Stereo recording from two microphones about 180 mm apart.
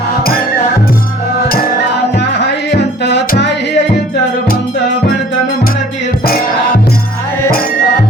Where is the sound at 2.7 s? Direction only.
70° left (ahead or behind).